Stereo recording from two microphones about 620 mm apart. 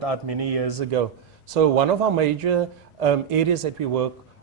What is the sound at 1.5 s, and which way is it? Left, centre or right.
Speech, right.